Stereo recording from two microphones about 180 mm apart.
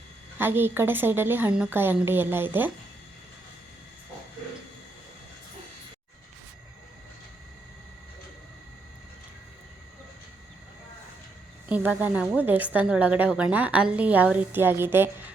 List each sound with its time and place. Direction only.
0.3 s a woman's voice: 10° right (ahead or behind)
11.7 s a woman's voice: 10° right (ahead or behind)